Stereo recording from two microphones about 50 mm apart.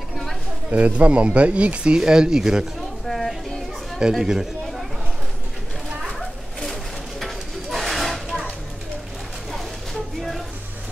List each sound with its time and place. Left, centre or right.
0.7 s speech: right
3.1 s a sound: centre
4.1 s speech: centre
6.1 s bird: centre